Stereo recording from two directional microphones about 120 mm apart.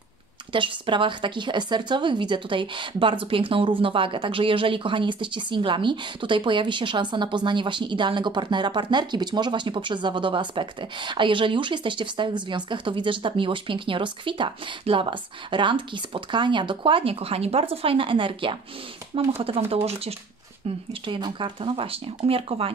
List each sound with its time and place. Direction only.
0.5 s speech: 45° right (ahead or behind)
21.0 s speech: 45° right (ahead or behind)